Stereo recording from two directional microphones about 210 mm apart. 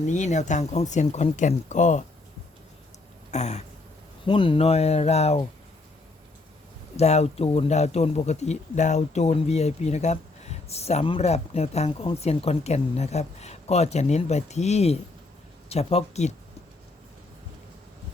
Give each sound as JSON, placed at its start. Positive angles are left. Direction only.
{"t": 0.0, "sound": "speech", "side_deg": 35}
{"t": 3.3, "sound": "speech", "side_deg": 30}
{"t": 6.9, "sound": "speech", "side_deg": 30}